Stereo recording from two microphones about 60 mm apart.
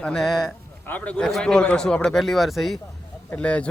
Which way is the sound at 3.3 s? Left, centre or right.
Left.